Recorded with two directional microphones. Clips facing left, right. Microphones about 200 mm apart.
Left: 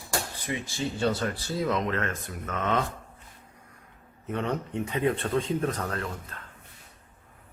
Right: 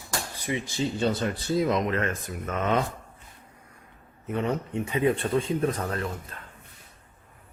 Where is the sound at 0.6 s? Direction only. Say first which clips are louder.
Right 1 dB; 20° right (ahead or behind).